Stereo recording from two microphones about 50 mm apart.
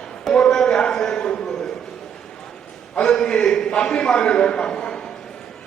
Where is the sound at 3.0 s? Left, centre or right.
Centre.